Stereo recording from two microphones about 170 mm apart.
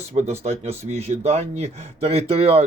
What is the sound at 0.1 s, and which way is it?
Speech, 40° right (ahead or behind).